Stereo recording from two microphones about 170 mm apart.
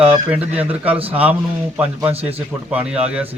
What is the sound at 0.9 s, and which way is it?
Speech, 35° right (ahead or behind).